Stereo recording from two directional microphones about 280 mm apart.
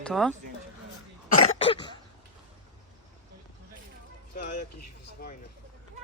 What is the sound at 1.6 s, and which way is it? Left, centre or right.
Cough, centre.